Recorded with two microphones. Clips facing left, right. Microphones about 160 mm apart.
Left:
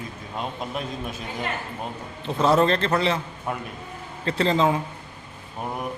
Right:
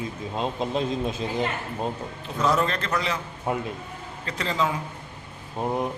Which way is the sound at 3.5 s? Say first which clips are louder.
Right 4 dB; 25° right (ahead or behind).